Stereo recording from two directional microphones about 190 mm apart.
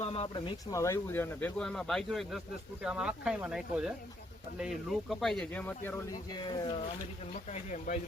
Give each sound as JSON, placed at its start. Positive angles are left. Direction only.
{"t": 0.0, "sound": "a sound", "side_deg": 30}
{"t": 0.7, "sound": "a man's voice", "side_deg": 15}
{"t": 6.3, "sound": "speech", "side_deg": 25}
{"t": 7.5, "sound": "speech", "side_deg": 40}